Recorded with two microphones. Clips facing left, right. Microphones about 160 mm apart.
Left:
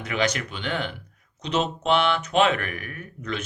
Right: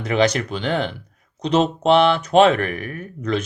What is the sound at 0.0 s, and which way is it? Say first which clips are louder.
Speech: right 7 dB; 35° right (ahead or behind).